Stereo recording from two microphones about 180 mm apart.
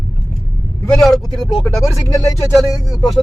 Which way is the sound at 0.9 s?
Centre (ahead or behind).